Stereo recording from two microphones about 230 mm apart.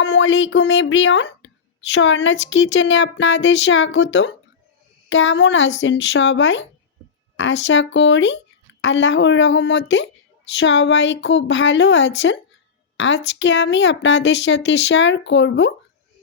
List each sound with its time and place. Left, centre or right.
0.0 s a woman's voice: left